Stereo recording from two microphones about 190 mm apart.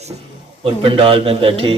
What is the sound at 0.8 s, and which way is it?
Speech, 30° right (ahead or behind).